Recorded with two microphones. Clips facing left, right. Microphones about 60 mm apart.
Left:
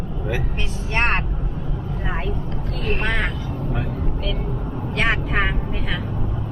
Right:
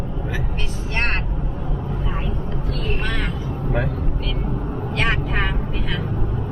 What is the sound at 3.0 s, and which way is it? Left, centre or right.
Speech, left.